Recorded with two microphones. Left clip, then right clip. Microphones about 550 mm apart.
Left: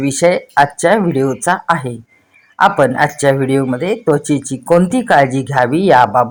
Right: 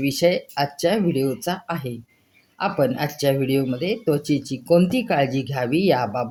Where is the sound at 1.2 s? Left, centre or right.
Right.